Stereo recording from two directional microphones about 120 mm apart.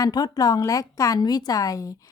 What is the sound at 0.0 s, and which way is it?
A woman's voice, 35° left (ahead or behind).